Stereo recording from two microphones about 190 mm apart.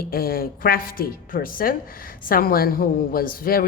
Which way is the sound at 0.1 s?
50° left (ahead or behind).